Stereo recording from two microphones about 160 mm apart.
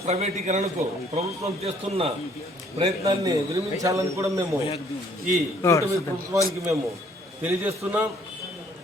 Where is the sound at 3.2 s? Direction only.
20° right (ahead or behind).